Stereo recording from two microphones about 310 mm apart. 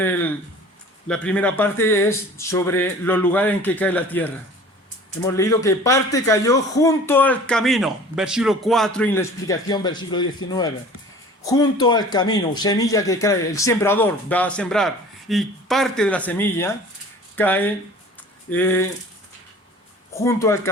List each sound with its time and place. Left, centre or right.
0.0 s a sound: centre
1.0 s speech: centre
11.4 s speech: centre
20.1 s speech: centre